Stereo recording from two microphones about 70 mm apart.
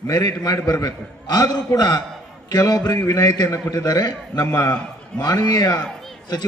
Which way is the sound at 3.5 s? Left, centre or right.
Left.